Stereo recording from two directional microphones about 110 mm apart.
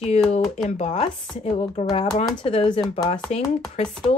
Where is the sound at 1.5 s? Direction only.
65° left (ahead or behind).